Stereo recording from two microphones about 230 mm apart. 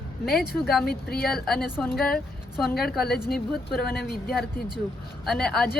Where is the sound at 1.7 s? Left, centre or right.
Centre.